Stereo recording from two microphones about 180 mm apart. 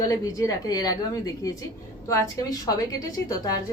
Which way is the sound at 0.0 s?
20° left (ahead or behind).